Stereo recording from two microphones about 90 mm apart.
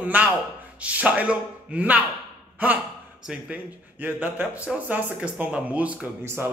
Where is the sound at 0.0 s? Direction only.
15° right (ahead or behind).